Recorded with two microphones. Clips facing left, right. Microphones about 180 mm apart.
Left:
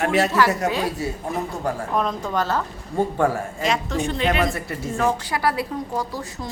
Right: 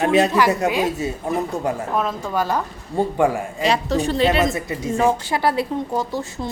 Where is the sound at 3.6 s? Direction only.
35° right (ahead or behind).